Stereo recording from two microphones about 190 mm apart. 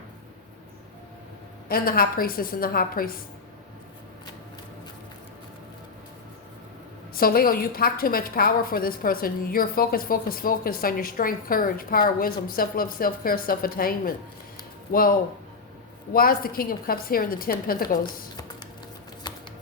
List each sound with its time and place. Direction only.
1.6 s a woman's voice: 50° left (ahead or behind)
7.1 s a woman's voice: 50° left (ahead or behind)
16.1 s a woman's voice: 50° left (ahead or behind)